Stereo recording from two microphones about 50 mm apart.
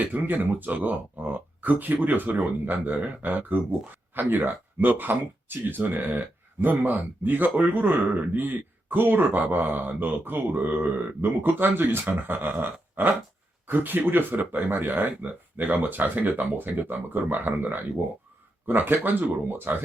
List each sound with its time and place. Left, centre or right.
0.0 s speech: right